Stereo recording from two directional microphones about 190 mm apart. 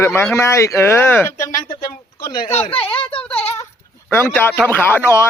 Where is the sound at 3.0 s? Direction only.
30° left (ahead or behind).